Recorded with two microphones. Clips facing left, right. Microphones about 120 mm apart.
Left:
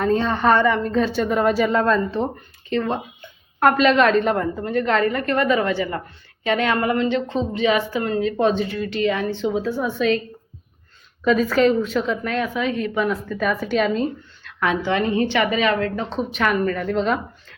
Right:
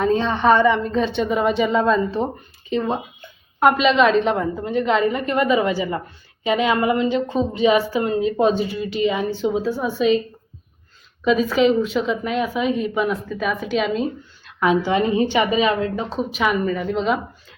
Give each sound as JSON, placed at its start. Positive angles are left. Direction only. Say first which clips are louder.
{"t": 0.0, "sound": "a woman's voice", "louder": "right 1 dB", "side_deg": 0}
{"t": 7.8, "sound": "a woman's voice", "louder": "right 2 dB", "side_deg": -20}
{"t": 11.2, "sound": "a woman's voice", "louder": "even", "side_deg": 0}
{"t": 13.1, "sound": "a woman's voice", "louder": "left 1 dB", "side_deg": -5}
{"t": 14.6, "sound": "a woman's voice", "louder": "right 3 dB", "side_deg": -15}
{"t": 16.0, "sound": "a woman's voice", "louder": "right 1 dB", "side_deg": -5}